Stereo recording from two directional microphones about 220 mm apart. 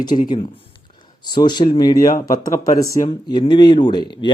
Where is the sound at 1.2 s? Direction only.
20° left (ahead or behind).